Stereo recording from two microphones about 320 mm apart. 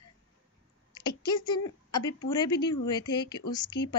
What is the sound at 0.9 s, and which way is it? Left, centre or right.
A woman's voice, centre.